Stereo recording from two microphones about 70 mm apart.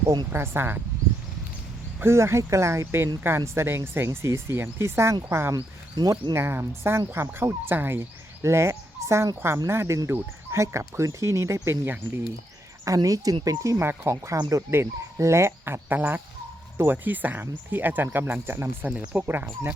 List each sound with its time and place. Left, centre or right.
0.3 s speech: right
2.0 s speech: right
8.4 s speech: right
12.8 s a woman's voice: right
13.8 s speech: right
18.9 s speech: centre
19.2 s speech: right